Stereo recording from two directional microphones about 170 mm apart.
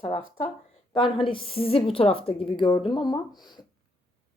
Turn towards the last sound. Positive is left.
turn(degrees=25)  # may be behind; listen again after turning